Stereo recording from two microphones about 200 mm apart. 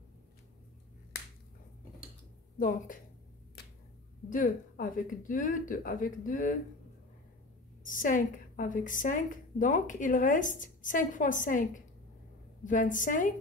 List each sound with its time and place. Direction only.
4.3 s a woman's voice: 45° left (ahead or behind)
7.8 s a woman's voice: 40° left (ahead or behind)